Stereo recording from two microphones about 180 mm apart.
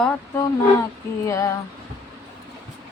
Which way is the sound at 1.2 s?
15° left (ahead or behind).